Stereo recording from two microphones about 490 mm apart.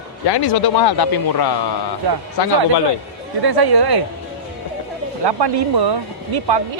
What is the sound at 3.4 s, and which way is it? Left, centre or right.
Speech, right.